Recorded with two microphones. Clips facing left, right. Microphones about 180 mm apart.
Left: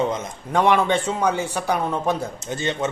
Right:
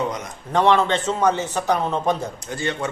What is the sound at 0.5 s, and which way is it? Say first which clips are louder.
Speech: even; 10° left (ahead or behind).